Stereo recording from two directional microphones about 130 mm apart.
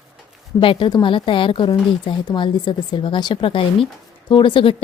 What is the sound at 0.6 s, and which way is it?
A woman's voice, 40° left (ahead or behind).